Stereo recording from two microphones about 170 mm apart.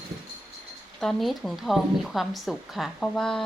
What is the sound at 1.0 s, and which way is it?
A woman's voice, centre (ahead or behind).